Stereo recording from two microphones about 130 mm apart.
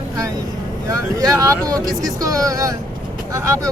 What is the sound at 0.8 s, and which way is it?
Vehicle, 25° right (ahead or behind).